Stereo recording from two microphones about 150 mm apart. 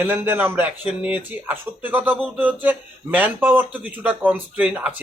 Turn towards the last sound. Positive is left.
turn(degrees=-10)  # may be behind; listen again after turning